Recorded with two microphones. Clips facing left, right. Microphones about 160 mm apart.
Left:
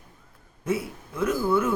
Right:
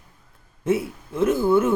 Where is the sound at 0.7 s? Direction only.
25° right (ahead or behind).